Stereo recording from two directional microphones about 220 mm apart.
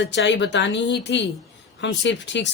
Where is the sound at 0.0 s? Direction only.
55° left (ahead or behind).